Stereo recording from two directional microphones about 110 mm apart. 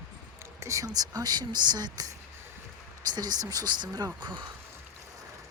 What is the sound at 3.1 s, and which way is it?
Speech, 40° right (ahead or behind).